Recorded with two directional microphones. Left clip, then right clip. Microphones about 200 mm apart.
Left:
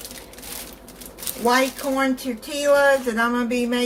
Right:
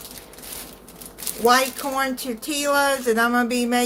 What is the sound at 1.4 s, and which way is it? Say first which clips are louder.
Speech: right 1 dB; 55° right (ahead or behind).